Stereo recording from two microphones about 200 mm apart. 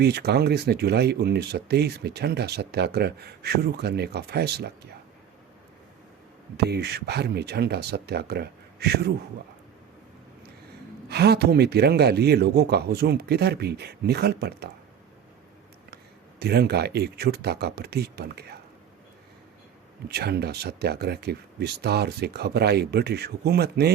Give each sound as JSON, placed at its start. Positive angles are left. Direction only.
{"t": 0.0, "sound": "speech", "side_deg": -55}
{"t": 6.6, "sound": "speech", "side_deg": -55}
{"t": 11.1, "sound": "speech", "side_deg": -55}
{"t": 16.4, "sound": "speech", "side_deg": -55}
{"t": 20.1, "sound": "speech", "side_deg": -55}